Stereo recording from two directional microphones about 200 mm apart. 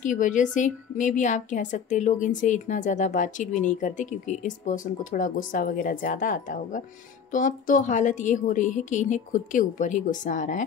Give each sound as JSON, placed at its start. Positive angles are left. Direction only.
{"t": 0.0, "sound": "a woman's voice", "side_deg": 40}